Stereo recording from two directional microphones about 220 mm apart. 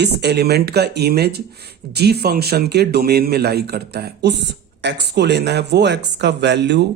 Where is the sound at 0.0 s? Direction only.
50° right (ahead or behind).